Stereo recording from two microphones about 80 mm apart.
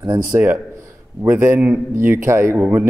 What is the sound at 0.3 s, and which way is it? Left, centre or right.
Speech, right.